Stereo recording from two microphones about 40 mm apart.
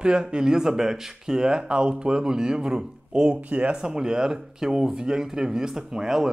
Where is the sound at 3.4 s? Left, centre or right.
Right.